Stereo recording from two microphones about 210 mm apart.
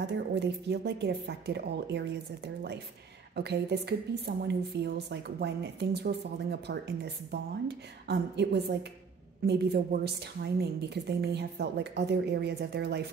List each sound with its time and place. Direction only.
0.0 s a woman's voice: 55° right (ahead or behind)